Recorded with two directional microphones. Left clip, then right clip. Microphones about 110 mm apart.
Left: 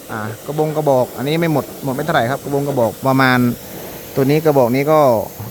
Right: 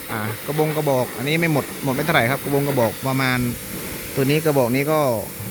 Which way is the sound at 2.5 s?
25° right (ahead or behind).